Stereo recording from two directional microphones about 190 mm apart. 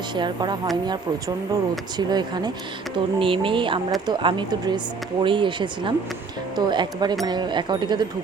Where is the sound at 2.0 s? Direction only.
20° right (ahead or behind).